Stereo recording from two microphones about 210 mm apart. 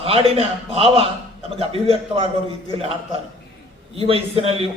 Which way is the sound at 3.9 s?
25° right (ahead or behind).